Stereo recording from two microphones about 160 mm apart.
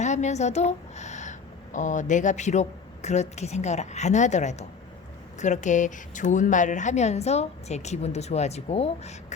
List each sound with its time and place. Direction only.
0.0 s a woman's voice: 45° left (ahead or behind)